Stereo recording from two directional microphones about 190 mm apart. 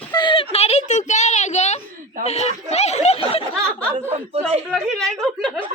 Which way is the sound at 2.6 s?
35° left (ahead or behind).